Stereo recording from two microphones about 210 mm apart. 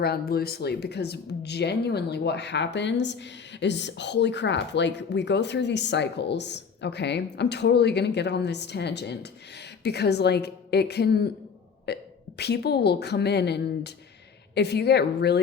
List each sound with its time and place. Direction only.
0.0 s a woman's voice: 50° left (ahead or behind)